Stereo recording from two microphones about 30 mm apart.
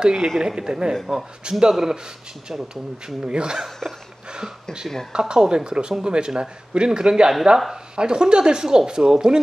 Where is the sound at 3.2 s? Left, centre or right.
Right.